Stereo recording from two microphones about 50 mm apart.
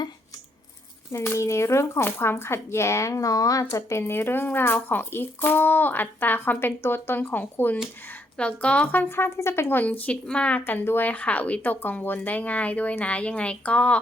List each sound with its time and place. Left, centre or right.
1.1 s speech: left
2.0 s speech: left
3.7 s speech: left
8.4 s speech: left
9.0 s speech: left
9.8 s speech: left
10.6 s speech: left